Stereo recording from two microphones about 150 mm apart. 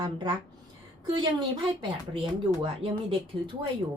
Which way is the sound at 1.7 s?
35° right (ahead or behind).